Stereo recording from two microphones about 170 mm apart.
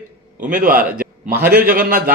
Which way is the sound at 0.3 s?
50° right (ahead or behind).